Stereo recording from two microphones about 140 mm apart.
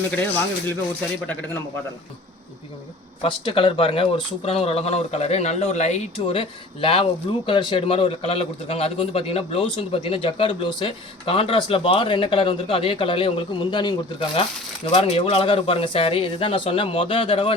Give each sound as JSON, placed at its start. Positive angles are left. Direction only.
{"t": 0.1, "sound": "speech", "side_deg": 15}
{"t": 3.2, "sound": "a man's voice", "side_deg": 35}
{"t": 14.8, "sound": "a man's voice", "side_deg": 45}